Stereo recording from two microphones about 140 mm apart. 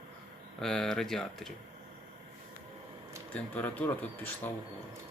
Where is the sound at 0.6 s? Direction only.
5° left (ahead or behind).